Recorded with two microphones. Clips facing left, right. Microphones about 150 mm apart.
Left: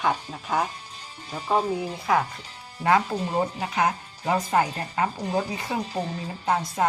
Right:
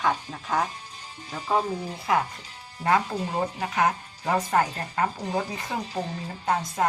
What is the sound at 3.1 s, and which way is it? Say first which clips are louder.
Speech: left 2 dB; 10° left (ahead or behind).